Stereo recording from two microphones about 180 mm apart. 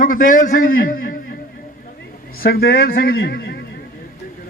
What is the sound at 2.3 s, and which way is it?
Speech, 55° left (ahead or behind).